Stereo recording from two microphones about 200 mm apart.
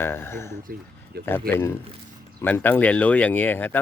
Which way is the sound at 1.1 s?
55° right (ahead or behind).